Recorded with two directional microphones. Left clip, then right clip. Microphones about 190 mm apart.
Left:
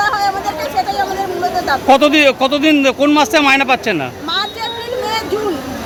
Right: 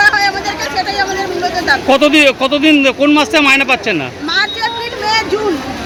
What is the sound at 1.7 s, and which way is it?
Speech, 5° left (ahead or behind).